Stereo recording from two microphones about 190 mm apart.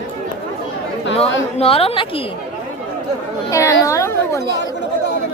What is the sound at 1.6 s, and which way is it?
Speech, 30° left (ahead or behind).